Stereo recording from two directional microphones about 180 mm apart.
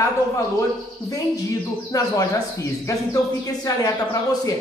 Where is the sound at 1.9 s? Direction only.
15° left (ahead or behind).